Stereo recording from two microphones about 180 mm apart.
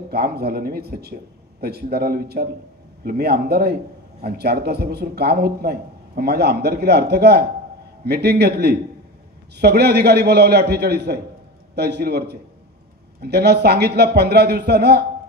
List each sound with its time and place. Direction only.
0.1 s a man's voice: 60° right (ahead or behind)